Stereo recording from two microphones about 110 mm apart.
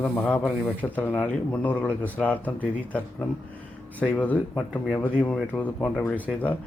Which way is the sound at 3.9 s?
15° left (ahead or behind).